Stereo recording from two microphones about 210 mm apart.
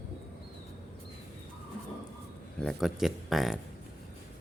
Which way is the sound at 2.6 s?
Centre (ahead or behind).